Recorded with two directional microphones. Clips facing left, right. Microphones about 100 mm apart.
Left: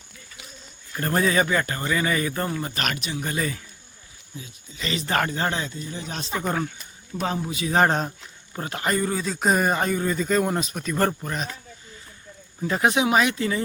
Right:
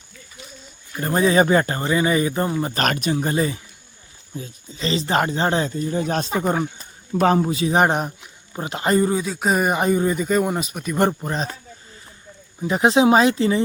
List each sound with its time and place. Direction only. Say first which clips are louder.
0.9 s speech: right 3 dB; 15° right (ahead or behind)
1.3 s speech: right 6 dB; 30° right (ahead or behind)
2.7 s speech: right 8 dB; 45° right (ahead or behind)
3.2 s speech: right 3 dB; 25° right (ahead or behind)
4.4 s speech: right 6 dB; 40° right (ahead or behind)
4.9 s speech: right 4 dB; 25° right (ahead or behind)
5.7 s speech: right 11 dB; 50° right (ahead or behind)
6.4 s speech: right 1 dB; 20° right (ahead or behind)
7.2 s a man's voice: right 10 dB; 65° right (ahead or behind)
7.4 s speech: right 7 dB; 35° right (ahead or behind)
7.7 s speech: even; 15° right (ahead or behind)
9.2 s speech: right 1 dB; 5° right (ahead or behind)
12.6 s speech: right 3 dB; 20° right (ahead or behind)
12.9 s speech: right 9 dB; 30° right (ahead or behind)